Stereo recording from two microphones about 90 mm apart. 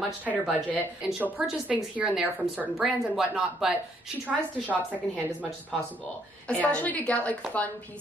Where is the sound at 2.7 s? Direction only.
5° right (ahead or behind).